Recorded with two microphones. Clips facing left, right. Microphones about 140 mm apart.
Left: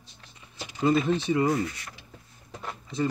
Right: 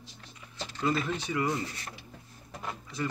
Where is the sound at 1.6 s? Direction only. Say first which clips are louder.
Left 6 dB; 30° right (ahead or behind).